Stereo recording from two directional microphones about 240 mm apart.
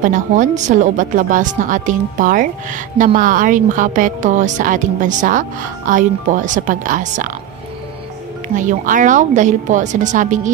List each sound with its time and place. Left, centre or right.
0.0 s speech: right
8.5 s speech: right